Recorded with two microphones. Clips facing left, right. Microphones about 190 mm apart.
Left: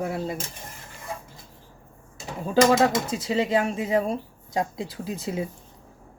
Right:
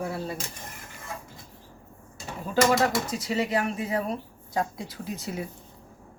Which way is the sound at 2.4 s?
30° left (ahead or behind).